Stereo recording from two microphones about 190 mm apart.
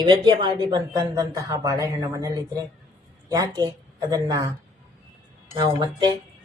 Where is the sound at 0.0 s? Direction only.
25° right (ahead or behind).